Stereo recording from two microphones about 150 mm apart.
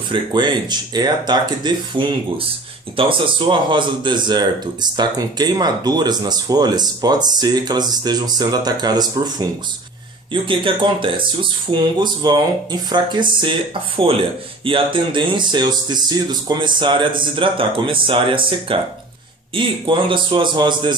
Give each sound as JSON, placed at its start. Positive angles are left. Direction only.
{"t": 0.1, "sound": "speech", "side_deg": -30}